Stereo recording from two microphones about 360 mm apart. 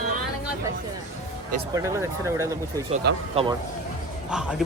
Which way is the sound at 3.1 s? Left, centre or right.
Right.